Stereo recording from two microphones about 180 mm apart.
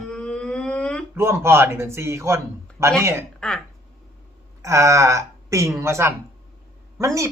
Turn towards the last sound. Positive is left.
turn(degrees=-15)  # may be behind; listen again after turning